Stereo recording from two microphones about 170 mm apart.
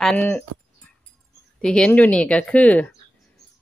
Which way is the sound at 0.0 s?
Centre (ahead or behind).